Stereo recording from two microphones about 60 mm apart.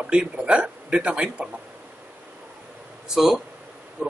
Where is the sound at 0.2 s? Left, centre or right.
Centre.